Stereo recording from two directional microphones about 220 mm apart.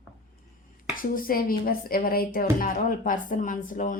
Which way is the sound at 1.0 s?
40° left (ahead or behind).